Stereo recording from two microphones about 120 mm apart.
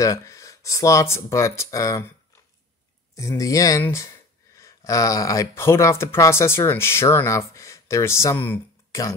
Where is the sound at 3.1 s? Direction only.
25° left (ahead or behind).